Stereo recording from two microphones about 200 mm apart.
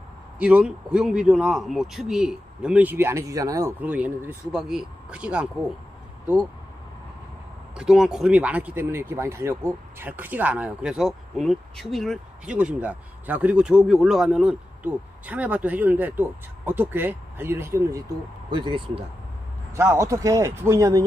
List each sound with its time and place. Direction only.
0.4 s speech: 5° right (ahead or behind)
7.7 s speech: 5° right (ahead or behind)
18.5 s speech: 25° right (ahead or behind)